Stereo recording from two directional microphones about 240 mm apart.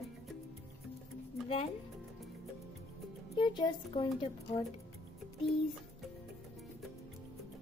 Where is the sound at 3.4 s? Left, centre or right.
Centre.